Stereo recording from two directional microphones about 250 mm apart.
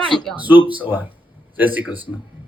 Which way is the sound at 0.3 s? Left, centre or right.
Centre.